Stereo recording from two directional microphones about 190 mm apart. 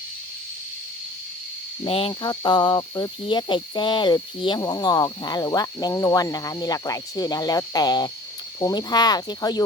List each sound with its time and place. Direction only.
1.8 s speech: 30° left (ahead or behind)